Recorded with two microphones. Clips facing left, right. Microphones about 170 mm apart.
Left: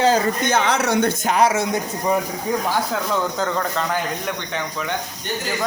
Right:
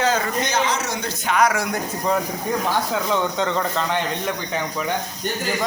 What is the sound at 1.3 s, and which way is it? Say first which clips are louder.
Speech: right 1 dB; 30° left (ahead or behind).